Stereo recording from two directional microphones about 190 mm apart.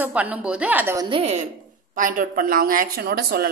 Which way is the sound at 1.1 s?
35° right (ahead or behind).